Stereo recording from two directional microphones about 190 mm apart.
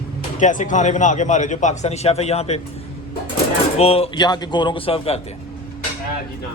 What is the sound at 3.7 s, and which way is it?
Speech, 30° left (ahead or behind).